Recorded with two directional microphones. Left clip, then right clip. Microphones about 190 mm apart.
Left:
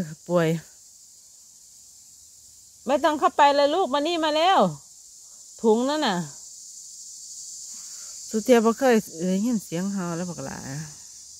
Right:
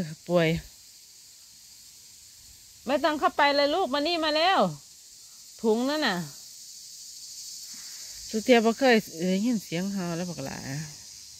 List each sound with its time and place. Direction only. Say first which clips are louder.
0.0 s speech: left 1 dB; 5° left (ahead or behind)
2.8 s speech: left 4 dB; 20° left (ahead or behind)
8.3 s cricket: left 2 dB; 10° left (ahead or behind)